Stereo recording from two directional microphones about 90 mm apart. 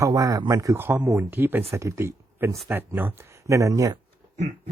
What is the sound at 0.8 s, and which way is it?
Speech, 25° right (ahead or behind).